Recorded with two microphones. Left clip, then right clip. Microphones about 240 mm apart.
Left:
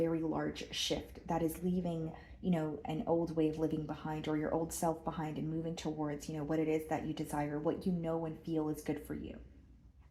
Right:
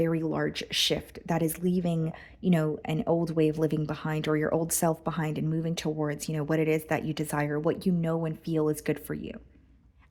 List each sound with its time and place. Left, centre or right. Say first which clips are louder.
0.0 s speech: right 7 dB; right